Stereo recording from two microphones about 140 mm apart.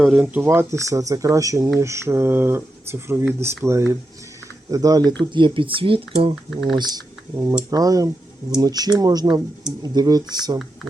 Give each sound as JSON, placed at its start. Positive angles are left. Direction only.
{"t": 0.1, "sound": "speech", "side_deg": -5}
{"t": 0.4, "sound": "speech", "side_deg": -15}
{"t": 6.5, "sound": "speech", "side_deg": 0}
{"t": 6.7, "sound": "speech", "side_deg": -30}